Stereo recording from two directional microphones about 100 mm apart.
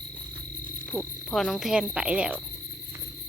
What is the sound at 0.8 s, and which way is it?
Frog, 15° left (ahead or behind).